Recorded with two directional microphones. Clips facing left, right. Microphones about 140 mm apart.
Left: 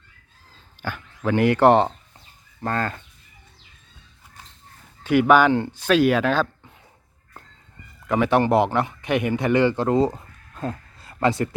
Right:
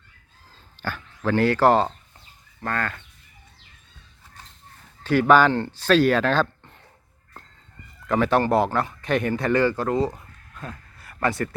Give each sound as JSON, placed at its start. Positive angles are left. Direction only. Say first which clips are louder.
{"t": 0.8, "sound": "speech", "louder": "even", "side_deg": 10}
{"t": 5.3, "sound": "speech", "louder": "right 1 dB", "side_deg": 15}
{"t": 8.0, "sound": "a man's voice", "louder": "left 1 dB", "side_deg": 15}